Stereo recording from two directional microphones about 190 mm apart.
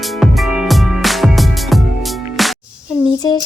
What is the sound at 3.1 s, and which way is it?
Speech, 20° left (ahead or behind).